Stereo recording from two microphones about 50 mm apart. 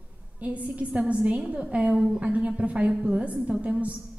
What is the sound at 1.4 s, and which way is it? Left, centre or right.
A woman's voice, centre.